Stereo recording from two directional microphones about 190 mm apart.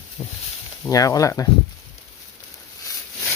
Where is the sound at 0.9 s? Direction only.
20° left (ahead or behind).